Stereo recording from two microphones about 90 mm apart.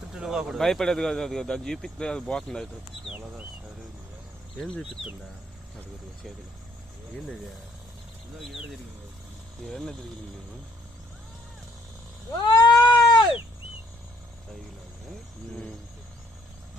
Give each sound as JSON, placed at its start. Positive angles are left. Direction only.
{"t": 0.1, "sound": "speech", "side_deg": -5}
{"t": 4.5, "sound": "speech", "side_deg": 10}
{"t": 9.6, "sound": "speech", "side_deg": 5}
{"t": 12.4, "sound": "cat", "side_deg": 55}
{"t": 12.8, "sound": "a sound", "side_deg": 60}